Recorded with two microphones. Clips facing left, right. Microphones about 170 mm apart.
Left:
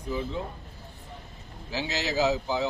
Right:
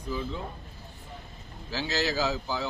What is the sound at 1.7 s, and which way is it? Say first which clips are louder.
Speech: right 1 dB; 20° left (ahead or behind).